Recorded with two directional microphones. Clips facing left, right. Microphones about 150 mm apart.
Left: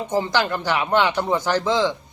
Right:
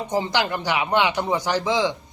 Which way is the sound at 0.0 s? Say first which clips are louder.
Left 1 dB; 15° right (ahead or behind).